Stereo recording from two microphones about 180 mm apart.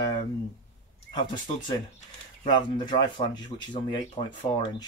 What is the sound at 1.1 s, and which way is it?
Speech, 25° left (ahead or behind).